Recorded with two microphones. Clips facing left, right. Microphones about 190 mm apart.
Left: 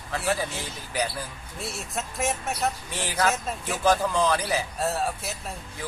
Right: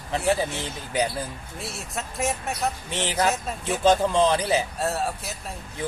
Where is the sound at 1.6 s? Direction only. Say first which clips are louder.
Left 1 dB; centre (ahead or behind).